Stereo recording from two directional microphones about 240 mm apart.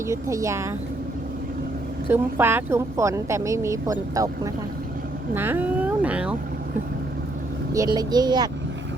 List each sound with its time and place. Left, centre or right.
0.1 s a woman's voice: centre
2.0 s a woman's voice: centre
7.7 s a woman's voice: centre